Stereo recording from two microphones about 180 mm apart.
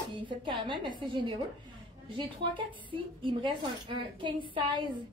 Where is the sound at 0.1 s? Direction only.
25° right (ahead or behind).